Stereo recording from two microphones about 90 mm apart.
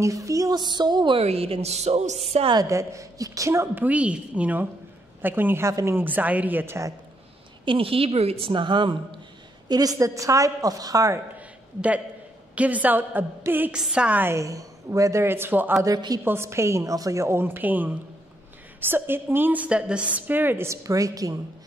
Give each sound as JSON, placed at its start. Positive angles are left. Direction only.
{"t": 0.0, "sound": "a woman's voice", "side_deg": -40}
{"t": 0.6, "sound": "a woman's voice", "side_deg": -55}
{"t": 1.1, "sound": "a woman's voice", "side_deg": -90}
{"t": 2.5, "sound": "a woman's voice", "side_deg": -35}
{"t": 3.6, "sound": "a woman's voice", "side_deg": -20}
{"t": 5.7, "sound": "a woman's voice", "side_deg": -40}
{"t": 5.9, "sound": "a woman's voice", "side_deg": -20}
{"t": 7.6, "sound": "a woman's voice", "side_deg": -85}
{"t": 9.7, "sound": "a woman's voice", "side_deg": -45}
{"t": 11.3, "sound": "a sound", "side_deg": -15}
{"t": 12.5, "sound": "a woman's voice", "side_deg": -15}
{"t": 13.7, "sound": "a woman's voice", "side_deg": -10}
{"t": 14.2, "sound": "a woman's voice", "side_deg": -35}
{"t": 16.3, "sound": "a woman's voice", "side_deg": -30}